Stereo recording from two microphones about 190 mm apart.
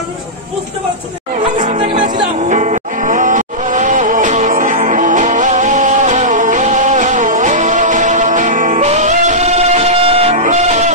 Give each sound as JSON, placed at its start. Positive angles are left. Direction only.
{"t": 1.6, "sound": "music", "side_deg": -40}